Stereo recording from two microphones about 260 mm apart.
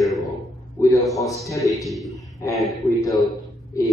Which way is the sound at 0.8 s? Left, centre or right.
Centre.